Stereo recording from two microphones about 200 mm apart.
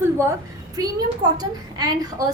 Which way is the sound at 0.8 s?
20° right (ahead or behind).